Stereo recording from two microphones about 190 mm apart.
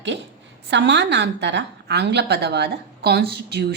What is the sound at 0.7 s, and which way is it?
Speech, 65° right (ahead or behind).